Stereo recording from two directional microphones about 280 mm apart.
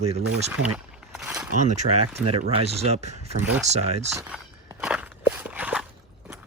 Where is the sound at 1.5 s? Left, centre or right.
Right.